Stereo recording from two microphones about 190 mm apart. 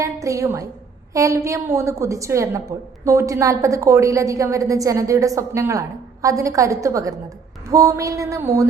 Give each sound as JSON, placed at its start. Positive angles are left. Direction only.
{"t": 0.0, "sound": "a woman's voice", "side_deg": -15}